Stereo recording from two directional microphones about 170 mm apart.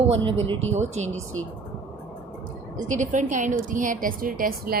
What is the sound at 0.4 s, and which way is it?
Speech, 40° right (ahead or behind).